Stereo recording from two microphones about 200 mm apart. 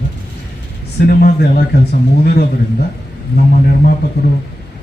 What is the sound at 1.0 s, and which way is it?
A man's voice, 50° left (ahead or behind).